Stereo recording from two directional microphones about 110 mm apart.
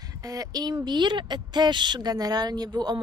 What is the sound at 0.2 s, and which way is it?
Speech, 30° right (ahead or behind).